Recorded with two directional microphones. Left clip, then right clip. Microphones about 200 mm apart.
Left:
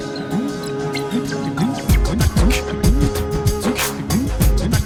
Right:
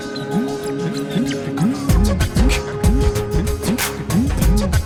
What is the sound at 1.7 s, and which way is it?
Music, centre (ahead or behind).